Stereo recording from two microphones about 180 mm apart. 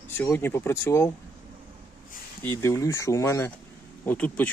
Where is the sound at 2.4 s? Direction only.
15° left (ahead or behind).